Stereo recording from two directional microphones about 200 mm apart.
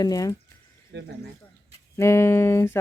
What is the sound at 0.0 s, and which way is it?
Speech, 15° left (ahead or behind).